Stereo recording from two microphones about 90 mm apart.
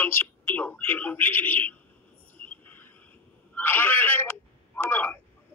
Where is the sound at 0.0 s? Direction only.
25° left (ahead or behind).